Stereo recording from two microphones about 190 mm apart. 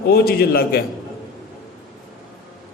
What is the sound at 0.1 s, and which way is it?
Speech, 55° left (ahead or behind).